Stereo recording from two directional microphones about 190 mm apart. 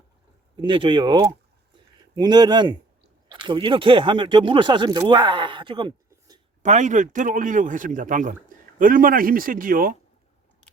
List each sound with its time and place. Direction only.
0.5 s speech: 25° right (ahead or behind)
6.6 s speech: 40° right (ahead or behind)